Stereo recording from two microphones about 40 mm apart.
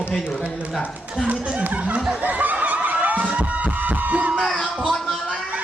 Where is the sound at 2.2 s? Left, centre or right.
Right.